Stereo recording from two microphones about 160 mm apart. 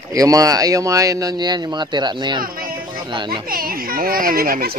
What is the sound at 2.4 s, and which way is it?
Speech, 65° right (ahead or behind).